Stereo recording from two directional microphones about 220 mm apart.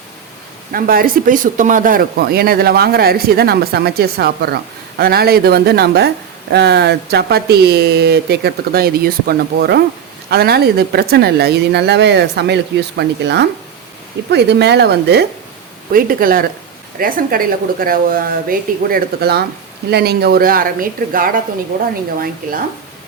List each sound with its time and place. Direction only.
0.7 s speech: 40° right (ahead or behind)